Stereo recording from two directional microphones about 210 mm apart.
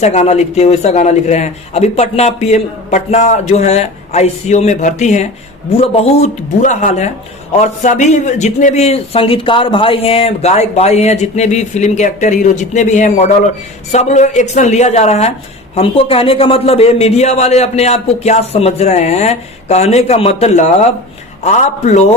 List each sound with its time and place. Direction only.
0.0 s speech: 30° left (ahead or behind)